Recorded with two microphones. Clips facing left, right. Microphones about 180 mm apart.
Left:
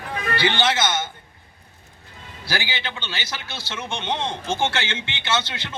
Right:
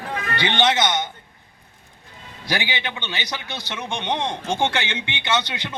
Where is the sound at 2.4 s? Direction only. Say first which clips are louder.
Right 2 dB; 15° right (ahead or behind).